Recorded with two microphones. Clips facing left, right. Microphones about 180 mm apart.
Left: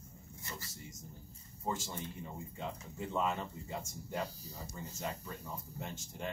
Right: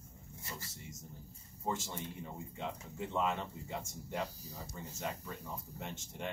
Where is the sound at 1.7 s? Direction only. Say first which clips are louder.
Even; centre (ahead or behind).